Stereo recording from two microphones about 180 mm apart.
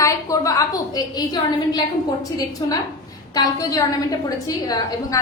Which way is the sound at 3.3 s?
20° left (ahead or behind).